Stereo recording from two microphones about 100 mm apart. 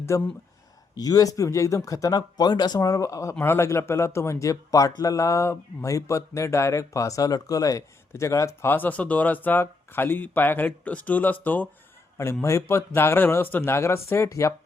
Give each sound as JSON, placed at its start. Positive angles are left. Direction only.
{"t": 0.1, "sound": "a man's voice", "side_deg": 30}
{"t": 12.1, "sound": "a man's voice", "side_deg": 25}